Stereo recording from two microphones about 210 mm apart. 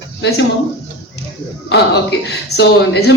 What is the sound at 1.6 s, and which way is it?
Speech, 55° left (ahead or behind).